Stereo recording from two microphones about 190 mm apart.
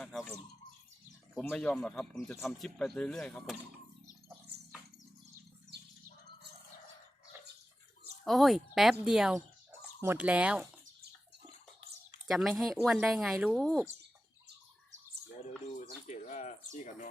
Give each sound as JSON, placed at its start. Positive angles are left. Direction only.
{"t": 0.0, "sound": "bird", "side_deg": 5}
{"t": 1.4, "sound": "speech", "side_deg": 5}
{"t": 5.7, "sound": "bird", "side_deg": -60}
{"t": 8.2, "sound": "speech", "side_deg": 0}
{"t": 12.3, "sound": "speech", "side_deg": 0}
{"t": 15.7, "sound": "bird", "side_deg": 40}
{"t": 16.7, "sound": "speech", "side_deg": 40}